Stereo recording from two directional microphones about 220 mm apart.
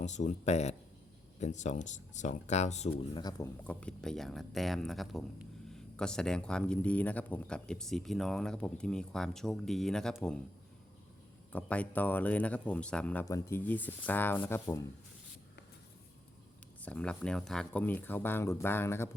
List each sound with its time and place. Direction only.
0.0 s speech: 35° left (ahead or behind)
2.9 s speech: 15° left (ahead or behind)
3.6 s speech: 5° left (ahead or behind)
11.5 s speech: 5° left (ahead or behind)
16.8 s speech: 5° left (ahead or behind)